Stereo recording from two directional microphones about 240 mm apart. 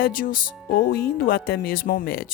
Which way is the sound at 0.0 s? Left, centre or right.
Left.